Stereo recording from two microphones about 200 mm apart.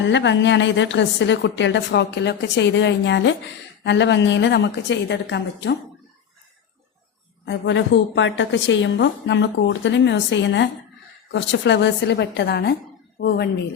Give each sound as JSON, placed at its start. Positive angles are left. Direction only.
{"t": 0.0, "sound": "a woman's voice", "side_deg": 65}
{"t": 7.4, "sound": "a woman's voice", "side_deg": 65}